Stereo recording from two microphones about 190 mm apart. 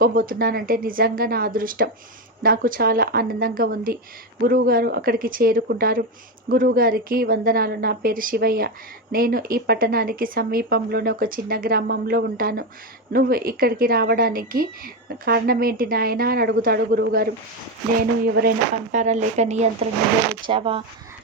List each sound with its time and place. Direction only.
0.0 s speech: 50° right (ahead or behind); by 20.8 s 30° right (ahead or behind)